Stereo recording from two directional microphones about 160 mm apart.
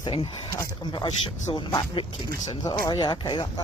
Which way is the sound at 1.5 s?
30° left (ahead or behind).